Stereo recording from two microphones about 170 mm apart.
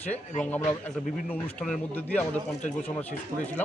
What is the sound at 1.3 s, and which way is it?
A man's voice, 5° left (ahead or behind).